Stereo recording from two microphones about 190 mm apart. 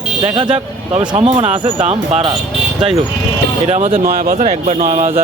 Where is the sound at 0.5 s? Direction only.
30° right (ahead or behind).